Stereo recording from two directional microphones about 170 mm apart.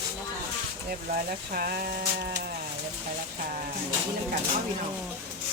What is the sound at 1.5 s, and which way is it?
Speech, 60° right (ahead or behind).